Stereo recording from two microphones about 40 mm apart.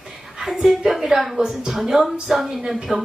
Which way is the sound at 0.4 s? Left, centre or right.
Centre.